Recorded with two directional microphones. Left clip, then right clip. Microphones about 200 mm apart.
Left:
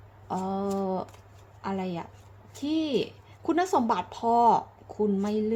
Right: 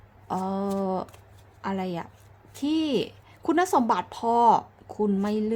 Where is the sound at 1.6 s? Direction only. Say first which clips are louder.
Right 2 dB; 20° right (ahead or behind).